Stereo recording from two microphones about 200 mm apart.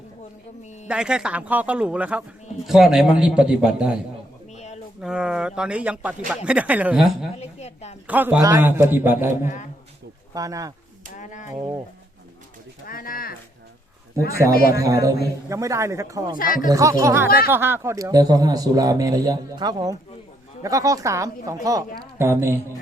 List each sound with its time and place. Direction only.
0.9 s speech: 5° right (ahead or behind)
4.5 s a sound: 35° left (ahead or behind)
4.9 s speech: 5° right (ahead or behind)
7.3 s speech: 30° left (ahead or behind)
8.0 s a man's voice: 5° right (ahead or behind)
9.4 s speech: 40° left (ahead or behind)
10.3 s a man's voice: 15° right (ahead or behind)
11.2 s speech: 40° left (ahead or behind)
11.5 s speech: 25° right (ahead or behind)
12.9 s speech: 45° left (ahead or behind)
14.7 s a man's voice: 15° right (ahead or behind)
16.4 s speech: 45° left (ahead or behind)
16.6 s a man's voice: 15° right (ahead or behind)